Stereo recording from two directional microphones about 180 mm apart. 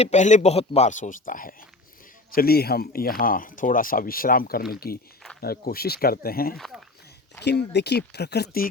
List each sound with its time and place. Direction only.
0.0 s speech: 40° left (ahead or behind); by 6.6 s 55° left (ahead or behind)
6.6 s speech: centre (ahead or behind)
7.4 s speech: 70° left (ahead or behind)